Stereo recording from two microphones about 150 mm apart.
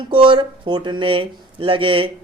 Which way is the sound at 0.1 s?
35° right (ahead or behind).